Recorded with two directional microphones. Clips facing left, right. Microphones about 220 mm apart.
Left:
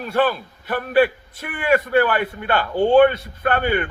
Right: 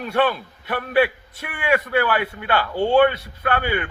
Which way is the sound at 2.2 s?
50° left (ahead or behind).